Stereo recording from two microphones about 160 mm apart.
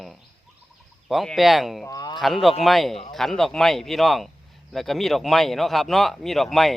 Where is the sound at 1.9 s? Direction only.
25° left (ahead or behind).